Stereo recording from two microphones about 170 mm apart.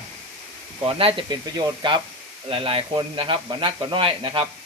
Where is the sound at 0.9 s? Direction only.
30° right (ahead or behind).